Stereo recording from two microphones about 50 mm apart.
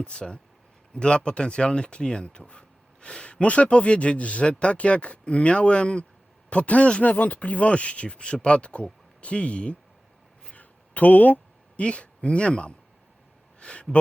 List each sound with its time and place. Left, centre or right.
0.0 s speech: centre
10.5 s a sound: left
11.8 s speech: left